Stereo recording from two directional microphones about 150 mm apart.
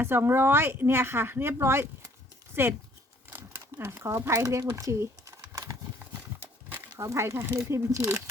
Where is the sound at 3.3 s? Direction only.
15° right (ahead or behind).